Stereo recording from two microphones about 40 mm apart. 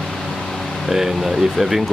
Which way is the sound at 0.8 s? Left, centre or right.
Centre.